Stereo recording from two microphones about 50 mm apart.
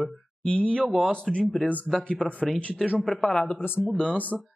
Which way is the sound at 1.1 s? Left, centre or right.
Centre.